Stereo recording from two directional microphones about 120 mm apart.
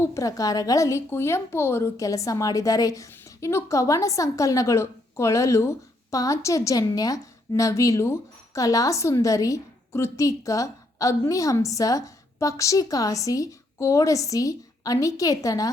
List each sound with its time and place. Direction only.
0.0 s a woman's voice: 25° left (ahead or behind)